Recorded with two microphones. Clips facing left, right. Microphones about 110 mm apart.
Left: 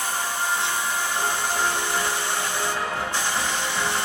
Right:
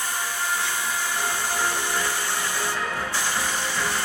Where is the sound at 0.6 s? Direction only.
20° left (ahead or behind).